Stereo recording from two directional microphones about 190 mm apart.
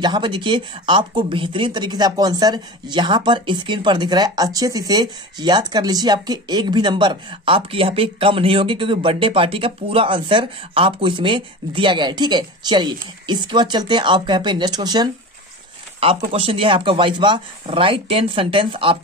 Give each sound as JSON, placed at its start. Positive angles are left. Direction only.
{"t": 0.0, "sound": "speech", "side_deg": -25}